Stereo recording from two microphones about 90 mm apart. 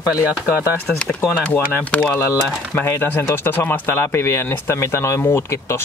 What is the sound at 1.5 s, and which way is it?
Speech, 20° left (ahead or behind).